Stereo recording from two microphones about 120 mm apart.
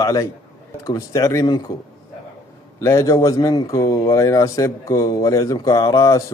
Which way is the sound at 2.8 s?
25° left (ahead or behind).